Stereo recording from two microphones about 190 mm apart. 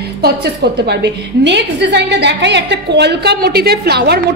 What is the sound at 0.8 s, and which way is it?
A woman's voice, 65° right (ahead or behind).